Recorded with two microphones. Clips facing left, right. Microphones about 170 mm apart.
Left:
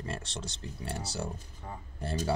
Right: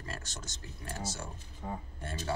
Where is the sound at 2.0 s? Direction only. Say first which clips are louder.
Left 7 dB; 35° left (ahead or behind).